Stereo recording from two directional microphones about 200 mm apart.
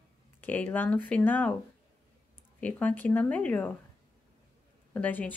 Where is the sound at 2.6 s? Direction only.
5° left (ahead or behind).